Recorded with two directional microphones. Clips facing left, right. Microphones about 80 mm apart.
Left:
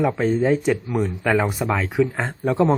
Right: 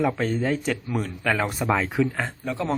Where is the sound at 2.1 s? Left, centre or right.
Left.